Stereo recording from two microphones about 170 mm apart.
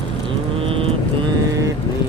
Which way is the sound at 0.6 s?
35° right (ahead or behind).